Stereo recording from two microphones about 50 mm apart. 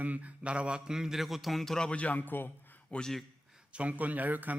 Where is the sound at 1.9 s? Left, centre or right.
Left.